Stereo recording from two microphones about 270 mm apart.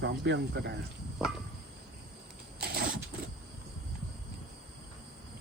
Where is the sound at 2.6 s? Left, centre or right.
Right.